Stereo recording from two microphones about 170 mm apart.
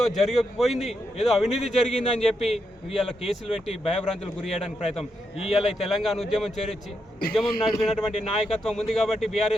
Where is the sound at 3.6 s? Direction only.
35° left (ahead or behind).